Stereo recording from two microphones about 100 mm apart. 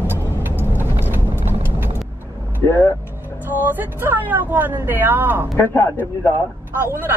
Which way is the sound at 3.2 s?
20° right (ahead or behind).